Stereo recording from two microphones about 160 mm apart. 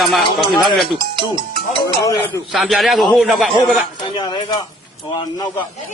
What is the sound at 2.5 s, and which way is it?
A man's voice, centre (ahead or behind).